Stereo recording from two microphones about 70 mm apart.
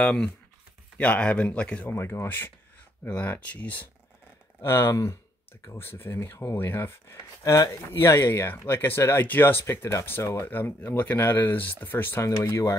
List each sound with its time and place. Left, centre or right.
0.0 s a man's voice: centre
1.9 s speech: left
4.6 s speech: left
7.2 s speech: left
8.3 s speech: left
12.2 s speech: left